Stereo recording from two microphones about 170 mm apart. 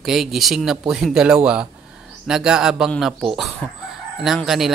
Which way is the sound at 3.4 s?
Centre (ahead or behind).